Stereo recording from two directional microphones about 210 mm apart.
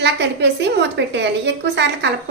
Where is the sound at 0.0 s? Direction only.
55° right (ahead or behind).